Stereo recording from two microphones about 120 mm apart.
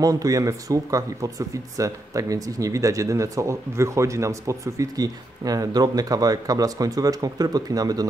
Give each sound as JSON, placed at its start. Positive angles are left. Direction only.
{"t": 0.0, "sound": "speech", "side_deg": -30}